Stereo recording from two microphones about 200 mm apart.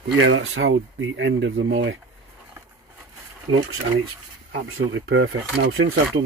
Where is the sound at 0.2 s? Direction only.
70° right (ahead or behind).